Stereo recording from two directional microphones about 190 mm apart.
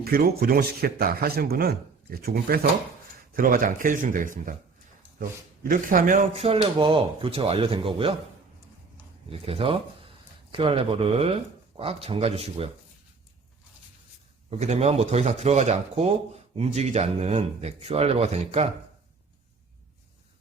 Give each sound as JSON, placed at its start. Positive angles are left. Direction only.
{"t": 0.0, "sound": "speech", "side_deg": -55}
{"t": 5.6, "sound": "speech", "side_deg": -45}
{"t": 9.3, "sound": "speech", "side_deg": -30}
{"t": 14.6, "sound": "speech", "side_deg": -35}